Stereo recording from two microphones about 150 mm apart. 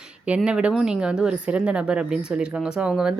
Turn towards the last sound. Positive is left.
turn(degrees=-5)  # may be behind; listen again after turning